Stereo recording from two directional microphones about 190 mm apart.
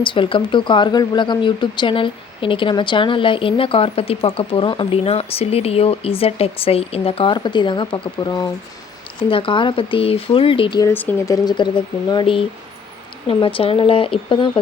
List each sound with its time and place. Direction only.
0.0 s speech: 25° left (ahead or behind)
10.8 s speech: 10° left (ahead or behind)
11.4 s speech: 25° left (ahead or behind)